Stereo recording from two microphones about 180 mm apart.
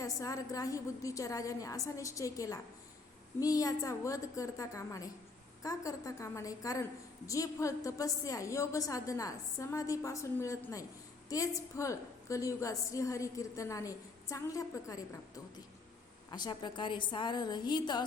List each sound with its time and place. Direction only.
0.0 s a woman's voice: 20° left (ahead or behind)
16.3 s a woman's voice: 25° left (ahead or behind)